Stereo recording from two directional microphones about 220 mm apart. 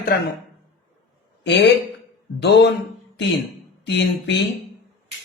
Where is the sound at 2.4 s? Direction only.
50° left (ahead or behind).